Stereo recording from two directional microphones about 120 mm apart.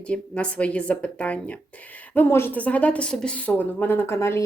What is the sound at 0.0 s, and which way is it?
A woman's voice, 10° left (ahead or behind).